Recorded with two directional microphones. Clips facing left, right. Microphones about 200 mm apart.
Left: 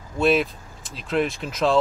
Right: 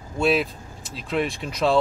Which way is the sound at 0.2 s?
Centre (ahead or behind).